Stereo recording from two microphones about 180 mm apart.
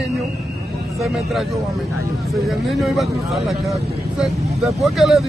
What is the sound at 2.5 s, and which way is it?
Speech, centre (ahead or behind).